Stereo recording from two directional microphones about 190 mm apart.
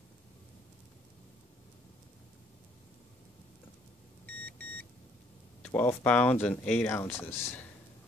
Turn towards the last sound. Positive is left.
turn(degrees=10)  # may be behind; listen again after turning